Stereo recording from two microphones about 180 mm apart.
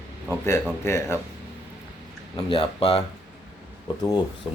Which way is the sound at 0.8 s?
15° left (ahead or behind).